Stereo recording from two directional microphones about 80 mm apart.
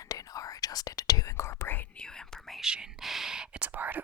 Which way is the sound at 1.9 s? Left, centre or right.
Centre.